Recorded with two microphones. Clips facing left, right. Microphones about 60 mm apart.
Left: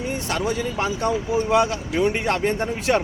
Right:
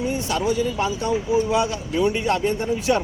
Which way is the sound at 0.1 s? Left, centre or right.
Left.